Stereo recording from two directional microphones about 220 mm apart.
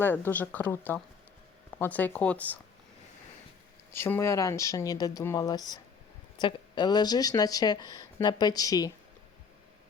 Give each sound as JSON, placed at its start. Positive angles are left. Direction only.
{"t": 0.0, "sound": "speech", "side_deg": 10}
{"t": 3.9, "sound": "speech", "side_deg": 10}